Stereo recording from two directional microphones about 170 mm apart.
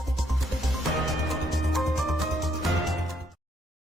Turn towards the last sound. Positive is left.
turn(degrees=0)  # may be behind; listen again after turning